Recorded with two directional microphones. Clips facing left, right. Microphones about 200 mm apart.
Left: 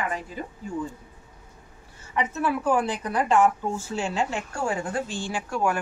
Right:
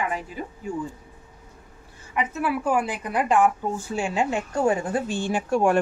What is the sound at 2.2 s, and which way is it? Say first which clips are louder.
Speech: even; 10° right (ahead or behind).